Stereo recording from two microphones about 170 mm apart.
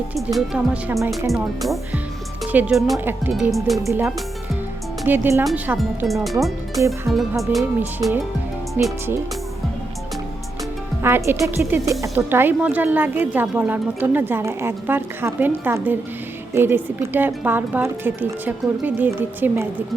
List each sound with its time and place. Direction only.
0.3 s speech: 5° right (ahead or behind)
3.0 s speech: 10° right (ahead or behind)
5.7 s speech: centre (ahead or behind)
6.7 s speech: 15° right (ahead or behind)
7.1 s speech: centre (ahead or behind)
7.8 s speech: 10° right (ahead or behind)
11.0 s speech: 15° right (ahead or behind)